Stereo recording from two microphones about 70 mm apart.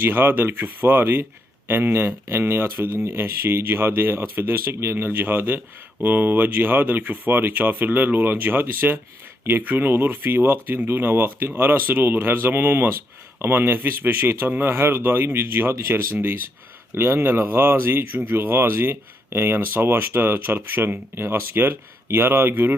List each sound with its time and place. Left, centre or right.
0.0 s speech: right